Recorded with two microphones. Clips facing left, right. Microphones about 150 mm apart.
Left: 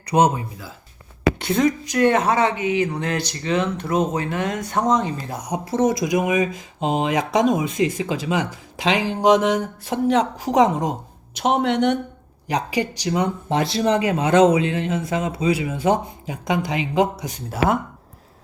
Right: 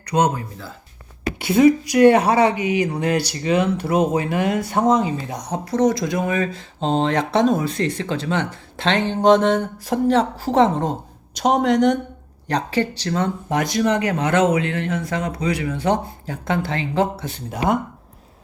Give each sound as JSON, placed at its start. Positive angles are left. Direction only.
{"t": 0.1, "sound": "speech", "side_deg": 20}
{"t": 1.4, "sound": "speech", "side_deg": -5}
{"t": 5.3, "sound": "speech", "side_deg": 10}
{"t": 5.7, "sound": "speech", "side_deg": 25}
{"t": 13.6, "sound": "speech", "side_deg": 25}
{"t": 15.7, "sound": "speech", "side_deg": 15}